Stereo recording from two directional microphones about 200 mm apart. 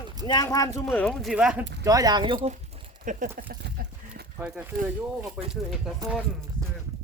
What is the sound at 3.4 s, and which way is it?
Livestock, 50° right (ahead or behind).